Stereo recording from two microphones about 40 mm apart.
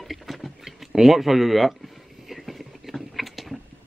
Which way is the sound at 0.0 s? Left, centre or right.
Centre.